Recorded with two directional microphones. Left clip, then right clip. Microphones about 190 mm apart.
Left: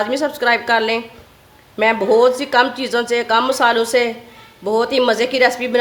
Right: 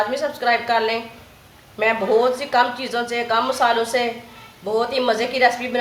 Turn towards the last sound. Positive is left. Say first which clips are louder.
# left 3 dB
turn(degrees=60)  # may be behind; listen again after turning